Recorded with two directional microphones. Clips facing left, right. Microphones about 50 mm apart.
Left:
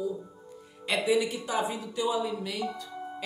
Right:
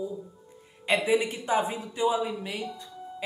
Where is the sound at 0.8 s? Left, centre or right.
Right.